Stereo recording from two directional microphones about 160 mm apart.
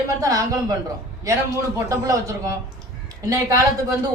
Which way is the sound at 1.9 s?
20° right (ahead or behind).